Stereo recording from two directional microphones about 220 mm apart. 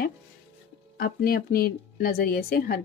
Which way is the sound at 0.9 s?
45° left (ahead or behind).